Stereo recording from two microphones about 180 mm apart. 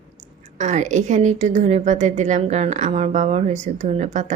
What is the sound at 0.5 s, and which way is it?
A woman's voice, 40° right (ahead or behind).